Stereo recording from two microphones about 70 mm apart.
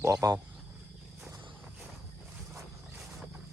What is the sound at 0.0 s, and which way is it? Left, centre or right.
Speech, right.